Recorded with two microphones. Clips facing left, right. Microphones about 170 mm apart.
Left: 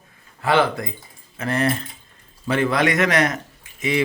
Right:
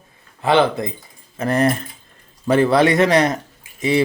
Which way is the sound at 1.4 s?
40° right (ahead or behind).